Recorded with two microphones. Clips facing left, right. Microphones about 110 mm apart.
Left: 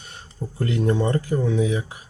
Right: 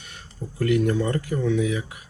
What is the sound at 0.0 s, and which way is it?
Speech, 30° left (ahead or behind).